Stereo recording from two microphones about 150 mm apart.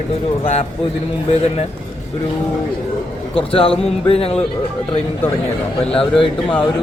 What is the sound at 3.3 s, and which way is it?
Speech, 40° left (ahead or behind).